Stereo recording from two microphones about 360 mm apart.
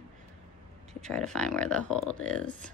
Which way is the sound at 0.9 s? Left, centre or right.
Centre.